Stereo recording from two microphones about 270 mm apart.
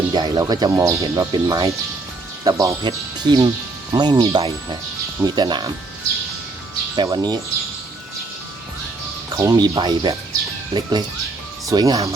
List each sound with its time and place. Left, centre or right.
0.1 s speech: centre
6.9 s speech: centre
9.3 s speech: centre